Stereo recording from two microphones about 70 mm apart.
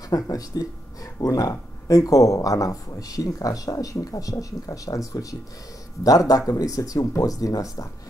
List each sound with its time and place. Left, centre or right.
0.1 s speech: left